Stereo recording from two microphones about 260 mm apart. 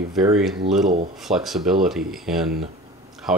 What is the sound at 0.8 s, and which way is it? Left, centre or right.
Speech, right.